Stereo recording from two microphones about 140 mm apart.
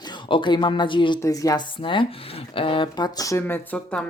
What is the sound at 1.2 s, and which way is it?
Speech, 25° left (ahead or behind).